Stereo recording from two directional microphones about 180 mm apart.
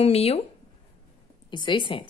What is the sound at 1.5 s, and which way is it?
Speech, 25° left (ahead or behind).